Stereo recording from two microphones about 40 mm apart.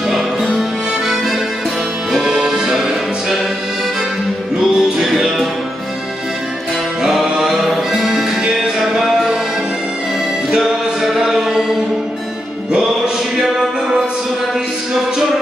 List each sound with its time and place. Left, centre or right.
2.3 s music: centre
4.7 s music: centre
7.0 s music: centre
11.0 s chant: centre
12.7 s music: centre